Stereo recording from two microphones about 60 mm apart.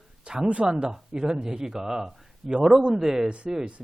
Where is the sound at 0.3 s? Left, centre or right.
Centre.